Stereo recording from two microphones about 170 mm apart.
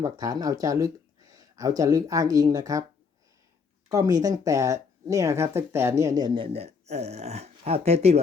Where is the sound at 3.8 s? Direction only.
20° right (ahead or behind); by 8.2 s 35° right (ahead or behind).